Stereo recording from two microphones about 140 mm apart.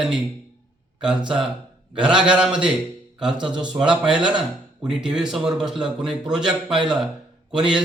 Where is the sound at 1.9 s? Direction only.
5° right (ahead or behind).